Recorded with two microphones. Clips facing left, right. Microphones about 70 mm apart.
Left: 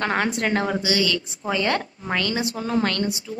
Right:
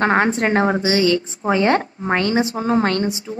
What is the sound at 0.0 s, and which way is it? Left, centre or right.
A woman's voice, right.